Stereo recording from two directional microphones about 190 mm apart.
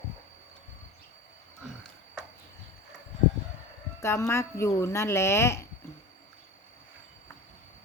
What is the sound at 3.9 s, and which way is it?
Speech, 15° left (ahead or behind).